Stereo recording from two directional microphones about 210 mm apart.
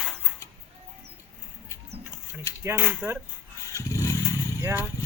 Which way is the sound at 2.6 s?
10° right (ahead or behind).